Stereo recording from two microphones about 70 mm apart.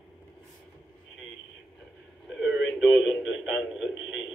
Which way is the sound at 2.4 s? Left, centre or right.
Centre.